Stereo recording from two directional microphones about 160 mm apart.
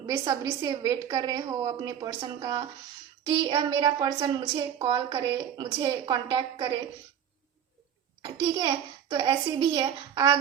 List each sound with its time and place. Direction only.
0.0 s a woman's voice: 20° right (ahead or behind)
8.2 s a woman's voice: 30° right (ahead or behind)